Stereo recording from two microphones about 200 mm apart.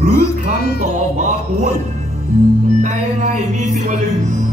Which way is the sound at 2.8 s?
35° right (ahead or behind).